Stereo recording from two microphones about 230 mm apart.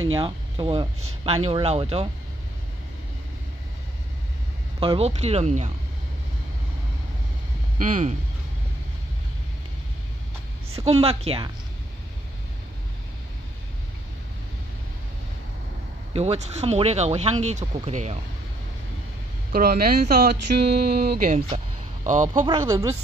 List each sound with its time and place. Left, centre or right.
0.1 s speech: right
4.7 s speech: right
7.8 s speech: right
10.8 s speech: right
16.1 s speech: right
19.5 s speech: right
22.5 s speech: centre